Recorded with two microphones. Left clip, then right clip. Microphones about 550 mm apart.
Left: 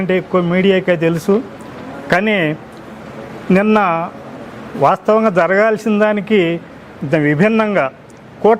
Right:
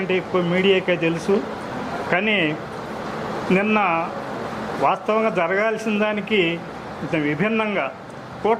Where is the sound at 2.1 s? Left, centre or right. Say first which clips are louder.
Left 6 dB; left.